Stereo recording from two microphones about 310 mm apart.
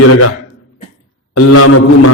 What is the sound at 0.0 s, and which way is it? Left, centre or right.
Speech, left.